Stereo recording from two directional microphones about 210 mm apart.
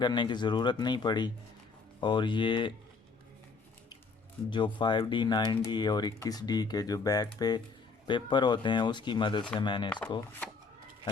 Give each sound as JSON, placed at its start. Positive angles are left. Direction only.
{"t": 0.0, "sound": "speech", "side_deg": 20}
{"t": 4.4, "sound": "speech", "side_deg": 20}